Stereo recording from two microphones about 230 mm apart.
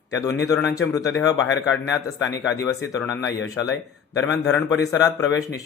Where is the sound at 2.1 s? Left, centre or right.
Centre.